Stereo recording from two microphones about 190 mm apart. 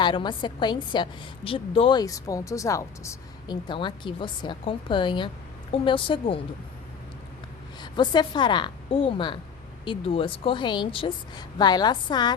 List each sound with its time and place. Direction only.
0.0 s a woman's voice: 25° left (ahead or behind)
7.8 s a woman's voice: 25° left (ahead or behind)